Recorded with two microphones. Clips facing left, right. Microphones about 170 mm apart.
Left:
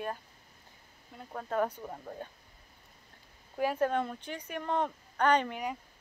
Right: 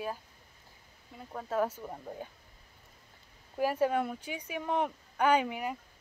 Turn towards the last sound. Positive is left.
turn(degrees=-5)  # may be behind; listen again after turning